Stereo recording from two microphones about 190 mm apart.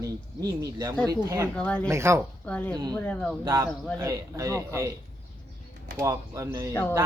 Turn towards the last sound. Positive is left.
turn(degrees=15)  # may be behind; listen again after turning